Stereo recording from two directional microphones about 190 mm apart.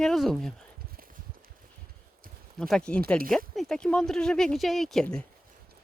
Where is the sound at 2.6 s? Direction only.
5° left (ahead or behind).